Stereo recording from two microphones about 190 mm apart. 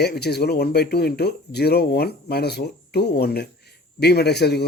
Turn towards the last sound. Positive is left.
turn(degrees=60)  # may be behind; listen again after turning